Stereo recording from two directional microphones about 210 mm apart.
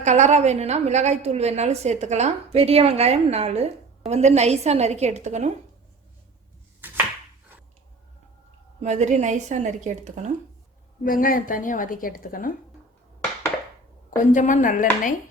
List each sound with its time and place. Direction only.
0.0 s a woman's voice: 35° right (ahead or behind)
6.8 s a sound: 10° right (ahead or behind)
8.8 s a woman's voice: 35° right (ahead or behind)
11.0 s a woman's voice: 40° left (ahead or behind)
14.2 s a woman's voice: 35° left (ahead or behind)